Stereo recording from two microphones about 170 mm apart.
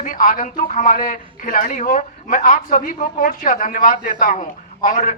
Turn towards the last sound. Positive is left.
turn(degrees=50)  # may be behind; listen again after turning